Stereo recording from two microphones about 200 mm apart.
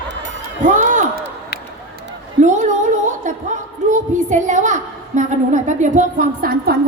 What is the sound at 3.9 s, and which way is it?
A woman's voice, 35° right (ahead or behind).